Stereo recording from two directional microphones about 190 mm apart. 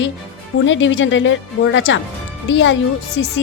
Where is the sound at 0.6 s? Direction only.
85° left.